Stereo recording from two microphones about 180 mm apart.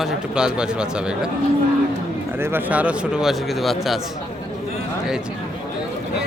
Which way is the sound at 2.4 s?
10° right (ahead or behind).